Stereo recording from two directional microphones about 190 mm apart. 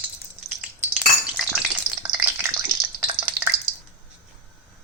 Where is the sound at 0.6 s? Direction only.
5° right (ahead or behind).